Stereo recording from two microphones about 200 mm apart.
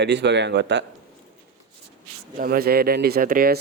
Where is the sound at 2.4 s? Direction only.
50° right (ahead or behind).